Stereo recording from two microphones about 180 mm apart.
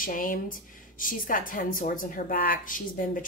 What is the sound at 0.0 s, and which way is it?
Speech, 50° left (ahead or behind).